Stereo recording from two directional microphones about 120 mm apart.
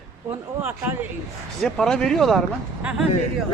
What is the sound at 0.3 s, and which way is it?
Speech, 15° right (ahead or behind).